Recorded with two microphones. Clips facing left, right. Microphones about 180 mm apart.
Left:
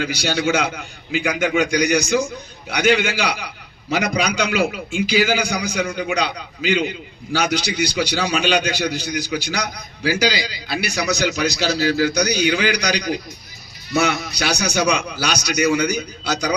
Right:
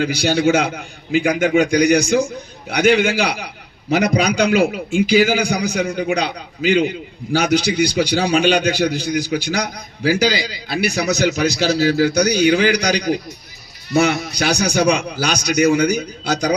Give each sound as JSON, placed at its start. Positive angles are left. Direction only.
{"t": 0.0, "sound": "a man's voice", "side_deg": -55}